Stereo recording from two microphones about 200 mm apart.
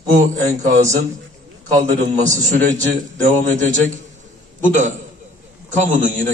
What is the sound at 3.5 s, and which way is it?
A man's voice, 40° right (ahead or behind).